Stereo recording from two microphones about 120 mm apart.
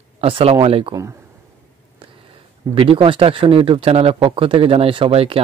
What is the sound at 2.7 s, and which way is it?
Speech, 50° right (ahead or behind).